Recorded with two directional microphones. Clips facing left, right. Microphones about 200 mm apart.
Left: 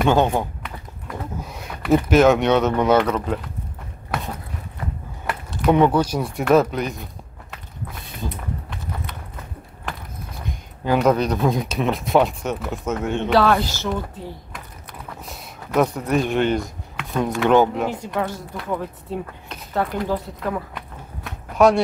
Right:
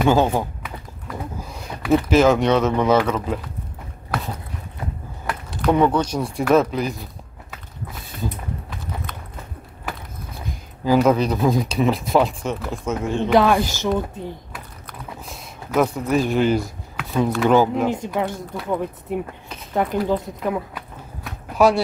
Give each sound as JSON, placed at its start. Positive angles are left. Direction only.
{"t": 0.0, "sound": "speech", "side_deg": -5}
{"t": 5.2, "sound": "a sound", "side_deg": 5}
{"t": 6.1, "sound": "speech", "side_deg": 0}
{"t": 10.9, "sound": "speech", "side_deg": 0}
{"t": 13.3, "sound": "speech", "side_deg": -15}
{"t": 15.2, "sound": "speech", "side_deg": 0}
{"t": 16.9, "sound": "a sound", "side_deg": 0}
{"t": 17.4, "sound": "speech", "side_deg": 0}
{"t": 17.8, "sound": "speech", "side_deg": -20}
{"t": 20.7, "sound": "a sound", "side_deg": -5}